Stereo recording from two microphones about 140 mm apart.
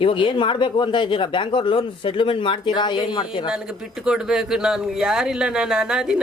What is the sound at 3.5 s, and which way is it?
Speech, 5° right (ahead or behind).